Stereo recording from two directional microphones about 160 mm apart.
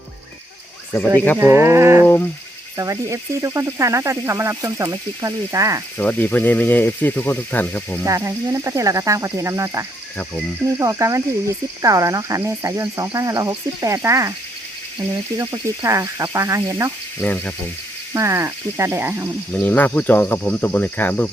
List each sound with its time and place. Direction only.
1.4 s speech: 15° right (ahead or behind)
6.0 s speech: 10° left (ahead or behind)
8.0 s speech: 20° right (ahead or behind)
15.4 s speech: 20° right (ahead or behind)
17.2 s speech: 10° left (ahead or behind)
18.1 s speech: 20° right (ahead or behind)
19.5 s speech: 10° left (ahead or behind)